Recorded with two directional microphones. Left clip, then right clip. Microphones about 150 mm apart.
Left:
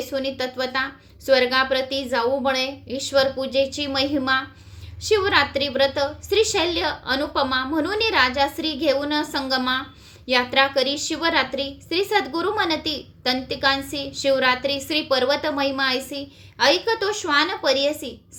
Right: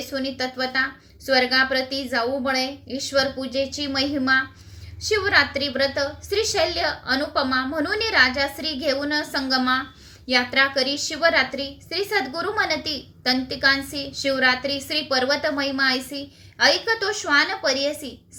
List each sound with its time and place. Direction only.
0.1 s a woman's voice: 30° left (ahead or behind)